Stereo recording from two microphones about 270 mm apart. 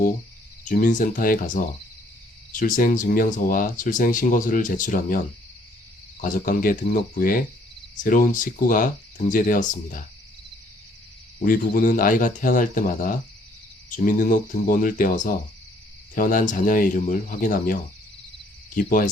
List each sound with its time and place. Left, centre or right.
0.6 s speech: left
6.2 s speech: left
11.4 s speech: left
18.8 s speech: left